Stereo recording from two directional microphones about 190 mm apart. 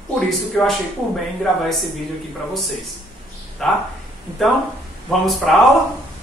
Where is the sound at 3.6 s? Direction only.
Centre (ahead or behind).